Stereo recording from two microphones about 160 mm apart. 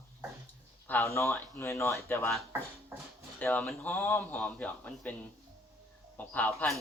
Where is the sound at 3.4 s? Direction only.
10° left (ahead or behind).